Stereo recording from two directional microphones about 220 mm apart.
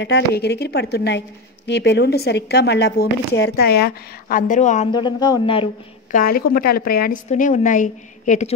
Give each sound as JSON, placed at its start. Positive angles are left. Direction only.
{"t": 0.0, "sound": "speech", "side_deg": 50}
{"t": 4.9, "sound": "speech", "side_deg": 20}
{"t": 6.1, "sound": "a woman's voice", "side_deg": 40}